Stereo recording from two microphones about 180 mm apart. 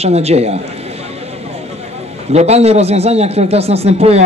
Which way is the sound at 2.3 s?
35° right (ahead or behind).